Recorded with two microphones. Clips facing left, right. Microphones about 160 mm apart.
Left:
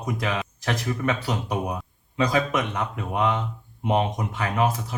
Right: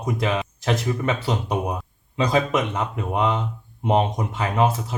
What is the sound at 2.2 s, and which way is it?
Speech, 25° right (ahead or behind).